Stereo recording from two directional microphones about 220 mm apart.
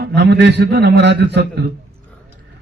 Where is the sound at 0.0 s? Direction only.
50° right (ahead or behind).